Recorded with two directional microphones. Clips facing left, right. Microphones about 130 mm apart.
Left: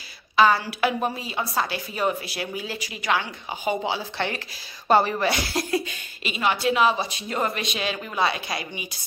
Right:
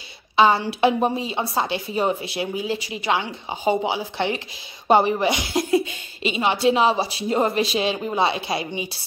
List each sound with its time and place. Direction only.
0.4 s a woman's voice: 25° right (ahead or behind)